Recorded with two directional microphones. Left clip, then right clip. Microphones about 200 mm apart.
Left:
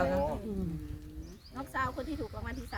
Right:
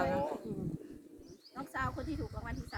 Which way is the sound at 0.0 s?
15° right (ahead or behind).